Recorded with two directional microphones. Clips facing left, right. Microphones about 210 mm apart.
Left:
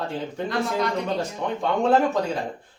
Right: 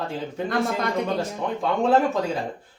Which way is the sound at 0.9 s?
Centre (ahead or behind).